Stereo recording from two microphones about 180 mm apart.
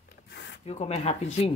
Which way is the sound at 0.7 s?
35° left (ahead or behind).